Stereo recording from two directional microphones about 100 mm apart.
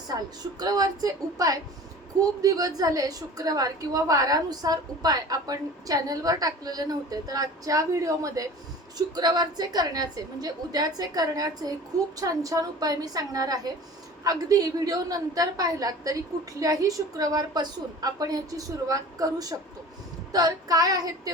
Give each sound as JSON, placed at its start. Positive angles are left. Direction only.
{"t": 0.6, "sound": "a woman's voice", "side_deg": -40}